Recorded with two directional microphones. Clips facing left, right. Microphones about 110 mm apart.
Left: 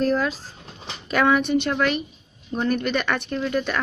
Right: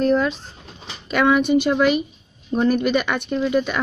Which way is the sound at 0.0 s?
Centre (ahead or behind).